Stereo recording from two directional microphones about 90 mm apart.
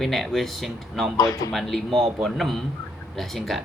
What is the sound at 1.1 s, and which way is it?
Speech, 40° left (ahead or behind).